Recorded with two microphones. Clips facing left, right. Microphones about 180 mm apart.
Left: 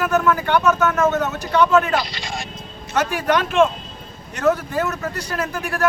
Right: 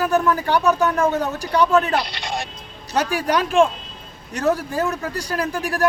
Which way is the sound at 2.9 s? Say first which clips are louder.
Left 1 dB; 35° right (ahead or behind).